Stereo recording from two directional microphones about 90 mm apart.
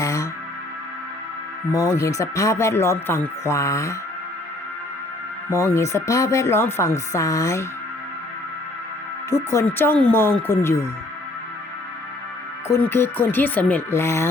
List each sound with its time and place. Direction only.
0.0 s music: 35° left (ahead or behind)
1.7 s speech: 35° left (ahead or behind)
5.5 s speech: 30° left (ahead or behind)
9.3 s speech: 30° left (ahead or behind)
12.8 s speech: 25° left (ahead or behind)
14.0 s speech: 30° left (ahead or behind)